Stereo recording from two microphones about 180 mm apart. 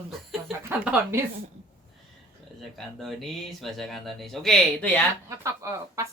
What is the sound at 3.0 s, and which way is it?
Speech, centre (ahead or behind).